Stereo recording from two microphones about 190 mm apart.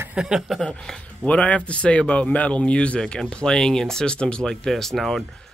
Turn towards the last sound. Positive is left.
turn(degrees=0)  # may be behind; listen again after turning